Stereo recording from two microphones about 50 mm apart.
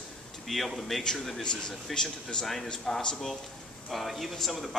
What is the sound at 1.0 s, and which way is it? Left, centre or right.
A man's voice, centre.